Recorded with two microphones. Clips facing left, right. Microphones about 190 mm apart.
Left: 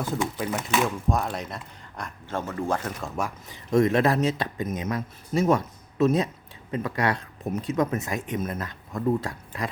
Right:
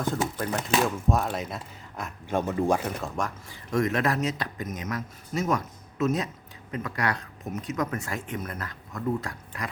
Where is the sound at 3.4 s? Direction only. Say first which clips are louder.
Left 7 dB; 25° left (ahead or behind).